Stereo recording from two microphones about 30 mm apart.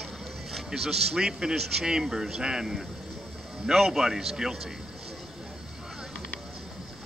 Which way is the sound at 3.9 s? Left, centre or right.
Centre.